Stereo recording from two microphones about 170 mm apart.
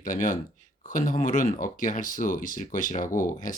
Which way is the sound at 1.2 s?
50° left (ahead or behind).